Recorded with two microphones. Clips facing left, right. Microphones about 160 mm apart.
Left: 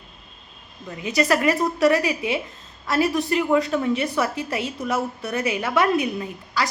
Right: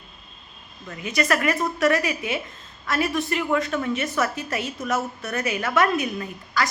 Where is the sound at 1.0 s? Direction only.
30° left (ahead or behind).